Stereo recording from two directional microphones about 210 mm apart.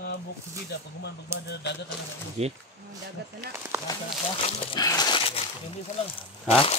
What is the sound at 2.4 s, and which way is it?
Speech, 30° right (ahead or behind).